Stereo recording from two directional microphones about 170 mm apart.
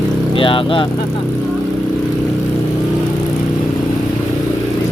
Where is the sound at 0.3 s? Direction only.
30° left (ahead or behind).